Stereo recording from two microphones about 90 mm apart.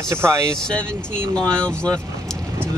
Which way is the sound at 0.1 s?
30° right (ahead or behind).